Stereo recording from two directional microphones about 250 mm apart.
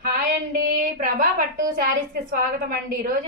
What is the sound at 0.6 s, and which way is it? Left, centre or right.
Speech, right.